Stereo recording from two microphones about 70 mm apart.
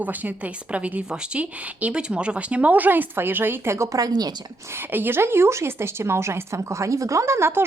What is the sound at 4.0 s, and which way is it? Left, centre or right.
Speech, right.